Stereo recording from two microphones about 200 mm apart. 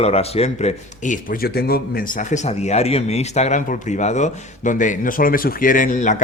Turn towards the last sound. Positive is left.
turn(degrees=40)  # may be behind; listen again after turning